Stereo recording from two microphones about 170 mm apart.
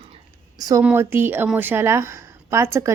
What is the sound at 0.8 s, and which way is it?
A woman's voice, 10° right (ahead or behind).